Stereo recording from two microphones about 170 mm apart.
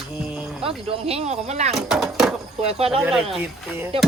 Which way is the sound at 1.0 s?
40° right (ahead or behind).